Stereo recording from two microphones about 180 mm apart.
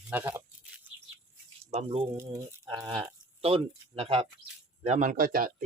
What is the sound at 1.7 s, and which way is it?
Speech, 30° right (ahead or behind).